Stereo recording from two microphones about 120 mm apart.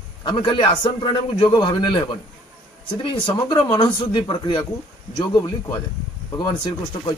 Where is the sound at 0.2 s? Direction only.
40° left (ahead or behind).